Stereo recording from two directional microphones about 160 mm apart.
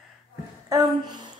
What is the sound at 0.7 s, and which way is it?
Speech, 30° right (ahead or behind).